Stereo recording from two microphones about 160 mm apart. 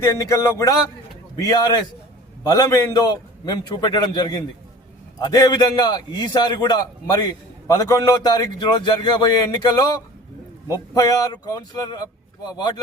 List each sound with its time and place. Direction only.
0.0 s a man's voice: 20° left (ahead or behind)